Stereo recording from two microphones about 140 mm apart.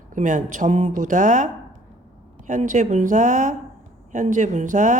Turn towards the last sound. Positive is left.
turn(degrees=-65)  # may be behind; listen again after turning